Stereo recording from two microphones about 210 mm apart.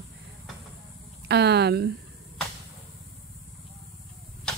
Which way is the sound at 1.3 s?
50° right (ahead or behind).